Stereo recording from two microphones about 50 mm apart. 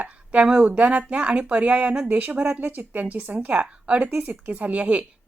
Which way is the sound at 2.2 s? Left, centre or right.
Right.